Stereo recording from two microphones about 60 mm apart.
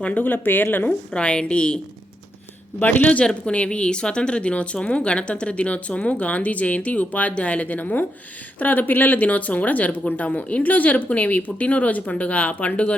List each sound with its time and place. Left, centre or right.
0.0 s speech: left
0.9 s a woman's voice: centre
2.8 s speech: left